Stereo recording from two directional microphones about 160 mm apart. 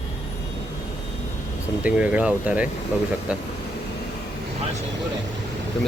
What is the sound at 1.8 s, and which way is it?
Speech, 10° right (ahead or behind).